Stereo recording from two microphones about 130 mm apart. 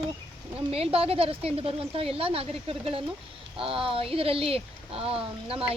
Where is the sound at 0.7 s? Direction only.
50° right (ahead or behind).